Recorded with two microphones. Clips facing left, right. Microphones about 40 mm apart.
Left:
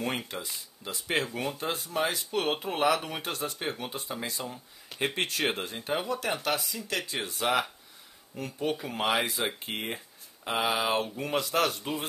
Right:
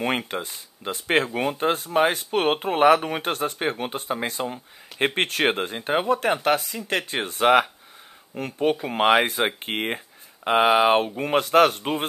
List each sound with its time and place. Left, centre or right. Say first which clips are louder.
0.3 s a man's voice: right 7 dB; right